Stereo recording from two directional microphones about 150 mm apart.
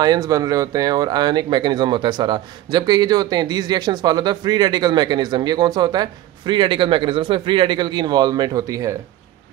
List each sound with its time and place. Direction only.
0.0 s speech: 25° right (ahead or behind)